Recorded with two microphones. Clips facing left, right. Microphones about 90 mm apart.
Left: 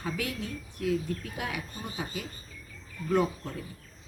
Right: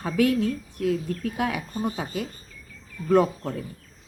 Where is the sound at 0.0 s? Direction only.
50° right (ahead or behind).